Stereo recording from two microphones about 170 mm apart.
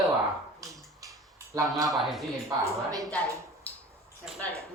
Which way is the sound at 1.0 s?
20° right (ahead or behind).